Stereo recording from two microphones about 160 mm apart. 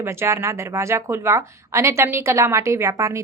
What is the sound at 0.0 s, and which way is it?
A woman's voice, 15° right (ahead or behind).